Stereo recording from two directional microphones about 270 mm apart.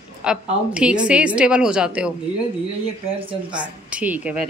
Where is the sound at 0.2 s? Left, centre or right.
Centre.